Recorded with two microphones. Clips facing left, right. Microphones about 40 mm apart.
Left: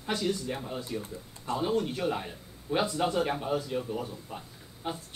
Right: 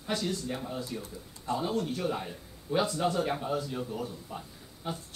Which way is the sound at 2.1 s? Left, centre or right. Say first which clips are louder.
Left 1 dB; centre.